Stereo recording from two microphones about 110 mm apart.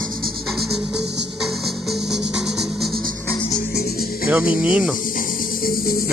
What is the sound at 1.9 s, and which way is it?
Music, 5° right (ahead or behind).